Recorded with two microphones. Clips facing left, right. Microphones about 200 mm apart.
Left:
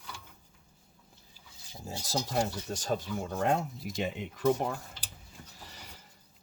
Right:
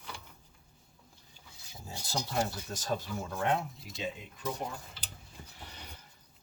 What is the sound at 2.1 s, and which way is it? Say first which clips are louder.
Speech: left 2 dB; 40° left (ahead or behind).